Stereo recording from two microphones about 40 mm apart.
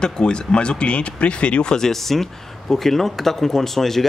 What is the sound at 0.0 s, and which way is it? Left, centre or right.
Speech, left.